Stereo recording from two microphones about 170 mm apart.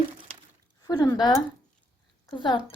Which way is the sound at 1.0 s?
20° left (ahead or behind).